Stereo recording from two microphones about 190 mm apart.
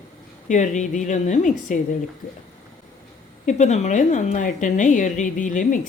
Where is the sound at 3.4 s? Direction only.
40° left (ahead or behind).